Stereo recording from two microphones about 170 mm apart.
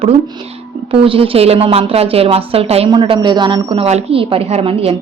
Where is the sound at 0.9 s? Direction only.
30° right (ahead or behind).